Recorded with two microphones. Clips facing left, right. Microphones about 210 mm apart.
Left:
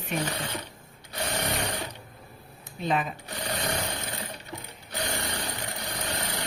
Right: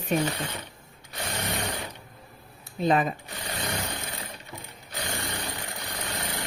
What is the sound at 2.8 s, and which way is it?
Speech, 40° right (ahead or behind).